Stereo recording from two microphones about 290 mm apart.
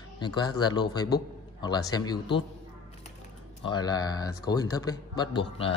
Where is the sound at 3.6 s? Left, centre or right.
Centre.